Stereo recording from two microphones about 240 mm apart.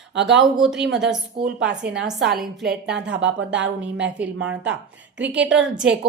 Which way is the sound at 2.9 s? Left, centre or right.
Right.